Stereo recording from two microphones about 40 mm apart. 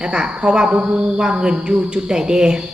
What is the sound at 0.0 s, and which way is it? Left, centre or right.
Speech, right.